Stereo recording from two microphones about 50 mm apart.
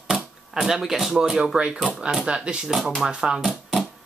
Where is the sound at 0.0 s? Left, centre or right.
Centre.